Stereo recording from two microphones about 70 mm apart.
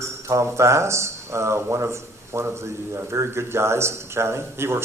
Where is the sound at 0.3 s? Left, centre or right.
Right.